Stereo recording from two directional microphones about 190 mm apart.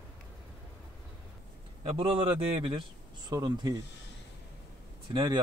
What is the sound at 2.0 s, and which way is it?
A man's voice, 30° right (ahead or behind).